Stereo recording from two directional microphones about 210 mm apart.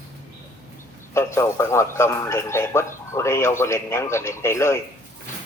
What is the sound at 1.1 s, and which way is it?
A man's voice, 15° left (ahead or behind).